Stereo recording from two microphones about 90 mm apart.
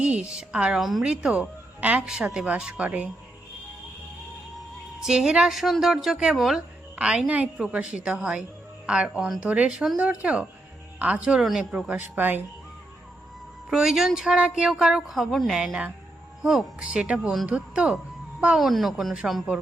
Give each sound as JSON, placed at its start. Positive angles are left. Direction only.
{"t": 0.0, "sound": "speech", "side_deg": -10}
{"t": 5.0, "sound": "speech", "side_deg": -10}
{"t": 11.9, "sound": "a woman's voice", "side_deg": -20}
{"t": 13.7, "sound": "a woman's voice", "side_deg": -5}
{"t": 18.6, "sound": "speech", "side_deg": 0}